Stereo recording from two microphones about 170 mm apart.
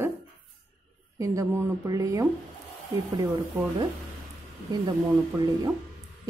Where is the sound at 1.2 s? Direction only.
15° right (ahead or behind).